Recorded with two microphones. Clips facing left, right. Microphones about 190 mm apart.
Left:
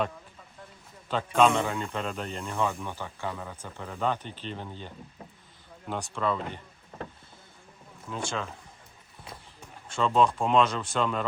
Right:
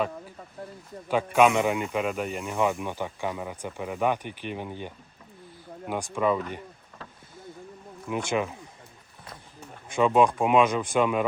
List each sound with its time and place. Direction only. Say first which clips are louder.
1.0 s speech: right 2 dB; 10° right (ahead or behind)
5.9 s speech: right 4 dB; 15° right (ahead or behind)
8.1 s speech: right 6 dB; 15° right (ahead or behind)
9.9 s speech: right 3 dB; 15° right (ahead or behind)